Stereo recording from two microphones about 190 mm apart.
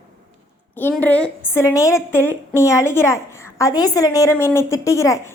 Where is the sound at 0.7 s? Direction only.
10° left (ahead or behind).